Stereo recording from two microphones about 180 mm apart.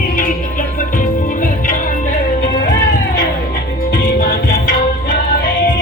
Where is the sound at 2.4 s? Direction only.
70° left (ahead or behind).